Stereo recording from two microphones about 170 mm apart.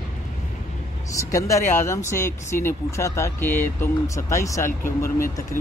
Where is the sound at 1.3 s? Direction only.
20° left (ahead or behind).